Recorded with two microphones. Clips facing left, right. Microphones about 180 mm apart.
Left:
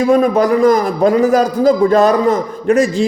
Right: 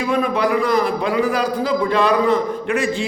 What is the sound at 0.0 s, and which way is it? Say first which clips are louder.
A man's voice: left 7 dB; 45° left (ahead or behind).